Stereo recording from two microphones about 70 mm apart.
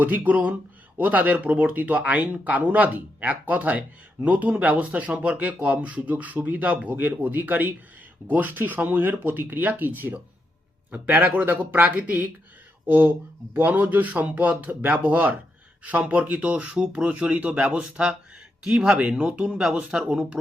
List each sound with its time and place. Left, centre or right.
0.0 s speech: right